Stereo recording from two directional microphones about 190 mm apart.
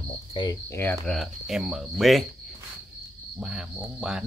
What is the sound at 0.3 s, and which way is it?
Cricket, 25° left (ahead or behind).